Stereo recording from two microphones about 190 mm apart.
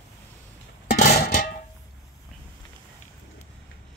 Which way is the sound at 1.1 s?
50° left (ahead or behind).